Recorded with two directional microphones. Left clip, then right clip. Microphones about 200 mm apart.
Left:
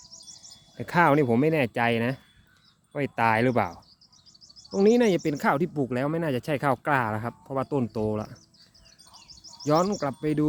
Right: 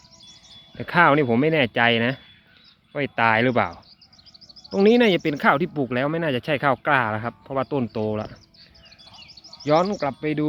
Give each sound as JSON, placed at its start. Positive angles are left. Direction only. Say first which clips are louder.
{"t": 0.8, "sound": "speech", "louder": "right 4 dB", "side_deg": 5}
{"t": 9.1, "sound": "bird", "louder": "right 2 dB", "side_deg": 70}
{"t": 9.6, "sound": "speech", "louder": "right 4 dB", "side_deg": 10}